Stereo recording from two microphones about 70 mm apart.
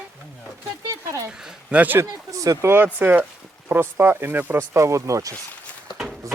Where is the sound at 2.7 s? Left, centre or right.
Right.